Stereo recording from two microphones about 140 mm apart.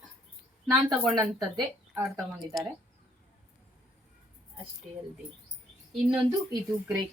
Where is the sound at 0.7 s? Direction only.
25° right (ahead or behind).